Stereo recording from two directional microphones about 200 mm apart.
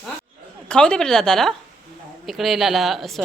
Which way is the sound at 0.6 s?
5° left (ahead or behind).